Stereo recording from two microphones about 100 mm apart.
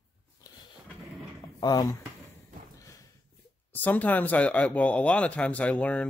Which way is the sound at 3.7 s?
15° left (ahead or behind).